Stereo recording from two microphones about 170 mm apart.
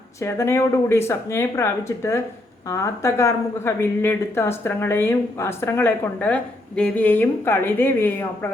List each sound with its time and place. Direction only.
0.2 s speech: 15° left (ahead or behind)